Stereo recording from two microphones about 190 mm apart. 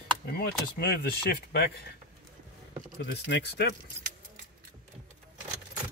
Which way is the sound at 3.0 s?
65° left (ahead or behind).